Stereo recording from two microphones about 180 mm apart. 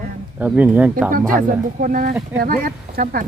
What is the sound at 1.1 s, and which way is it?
Speech, 50° right (ahead or behind).